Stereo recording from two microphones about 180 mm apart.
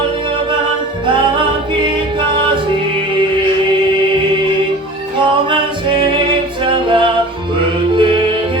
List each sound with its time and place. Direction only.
1.0 s music: 25° right (ahead or behind)
5.5 s music: 30° right (ahead or behind)